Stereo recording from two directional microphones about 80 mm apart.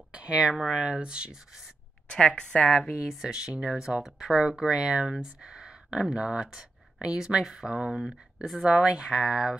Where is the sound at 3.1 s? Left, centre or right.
Centre.